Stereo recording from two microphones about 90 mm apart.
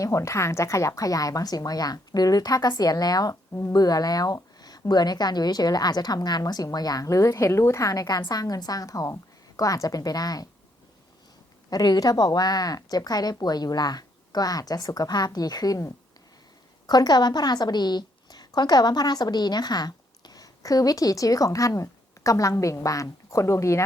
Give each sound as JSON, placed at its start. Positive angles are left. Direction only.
{"t": 0.0, "sound": "a woman's voice", "side_deg": 35}
{"t": 11.7, "sound": "a woman's voice", "side_deg": 45}